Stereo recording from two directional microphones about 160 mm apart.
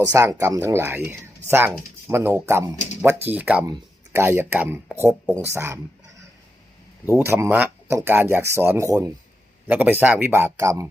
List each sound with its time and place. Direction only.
0.0 s speech: 20° right (ahead or behind)
7.1 s speech: 15° right (ahead or behind)